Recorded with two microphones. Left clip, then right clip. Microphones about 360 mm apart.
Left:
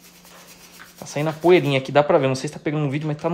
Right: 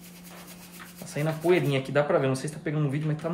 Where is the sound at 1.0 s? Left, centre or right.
Centre.